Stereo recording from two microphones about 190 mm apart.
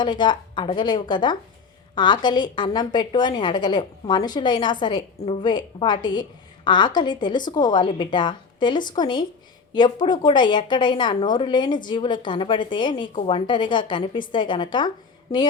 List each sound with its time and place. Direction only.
0.0 s a woman's voice: 25° left (ahead or behind)